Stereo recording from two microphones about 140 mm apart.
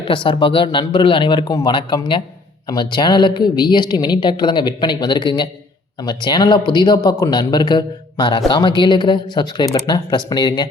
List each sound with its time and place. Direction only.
0.1 s speech: 35° left (ahead or behind)